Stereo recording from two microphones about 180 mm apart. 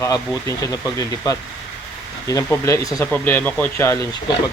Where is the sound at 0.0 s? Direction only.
15° left (ahead or behind).